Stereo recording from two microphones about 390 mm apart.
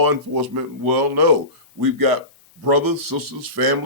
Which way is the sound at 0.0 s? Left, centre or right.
Right.